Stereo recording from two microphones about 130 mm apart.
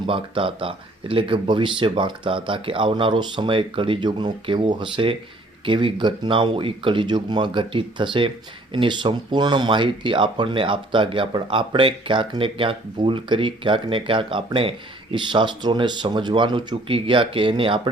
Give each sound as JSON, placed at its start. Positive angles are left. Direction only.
{"t": 0.1, "sound": "speech", "side_deg": -40}